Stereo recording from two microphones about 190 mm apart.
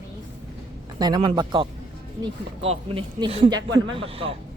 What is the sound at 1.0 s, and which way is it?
Speech, 20° right (ahead or behind).